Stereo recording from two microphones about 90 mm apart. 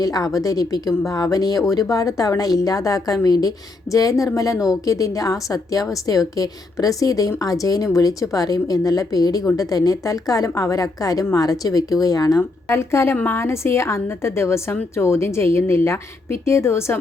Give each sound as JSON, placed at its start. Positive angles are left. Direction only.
{"t": 0.0, "sound": "a woman's voice", "side_deg": 45}
{"t": 12.4, "sound": "a woman's voice", "side_deg": 30}